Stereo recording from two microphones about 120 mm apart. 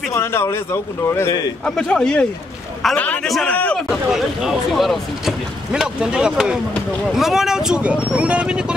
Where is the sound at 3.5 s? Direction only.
10° left (ahead or behind).